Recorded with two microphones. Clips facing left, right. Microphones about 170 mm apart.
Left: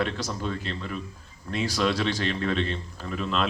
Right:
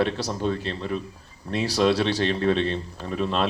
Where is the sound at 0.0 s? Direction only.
35° right (ahead or behind).